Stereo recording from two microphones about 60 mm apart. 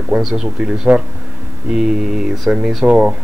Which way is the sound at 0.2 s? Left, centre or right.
Centre.